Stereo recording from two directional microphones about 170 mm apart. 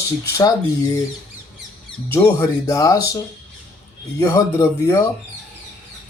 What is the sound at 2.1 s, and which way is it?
Speech, 15° left (ahead or behind).